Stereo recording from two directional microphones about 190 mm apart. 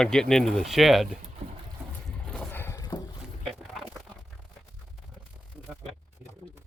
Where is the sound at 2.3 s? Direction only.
10° left (ahead or behind).